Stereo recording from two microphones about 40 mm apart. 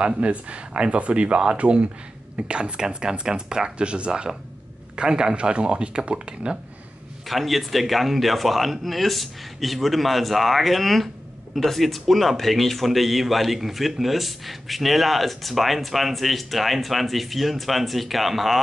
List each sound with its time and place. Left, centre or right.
0.0 s speech: right
7.2 s speech: centre